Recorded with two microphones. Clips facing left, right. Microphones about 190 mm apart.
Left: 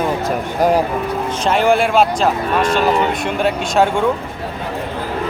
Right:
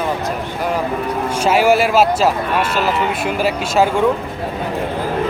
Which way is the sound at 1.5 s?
5° right (ahead or behind).